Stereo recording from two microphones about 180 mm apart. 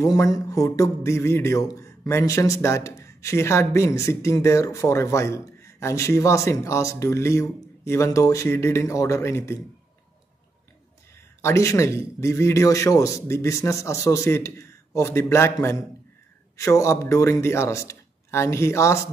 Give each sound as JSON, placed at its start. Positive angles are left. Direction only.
{"t": 0.0, "sound": "speech", "side_deg": 20}
{"t": 11.4, "sound": "speech", "side_deg": 15}